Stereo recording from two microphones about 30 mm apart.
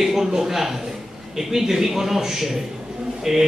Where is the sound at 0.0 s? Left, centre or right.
Centre.